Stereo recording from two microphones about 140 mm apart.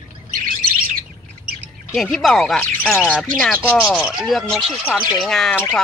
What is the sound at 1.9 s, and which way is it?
Speech, 5° left (ahead or behind).